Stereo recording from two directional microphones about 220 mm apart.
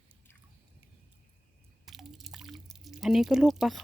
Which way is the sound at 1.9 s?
Centre (ahead or behind).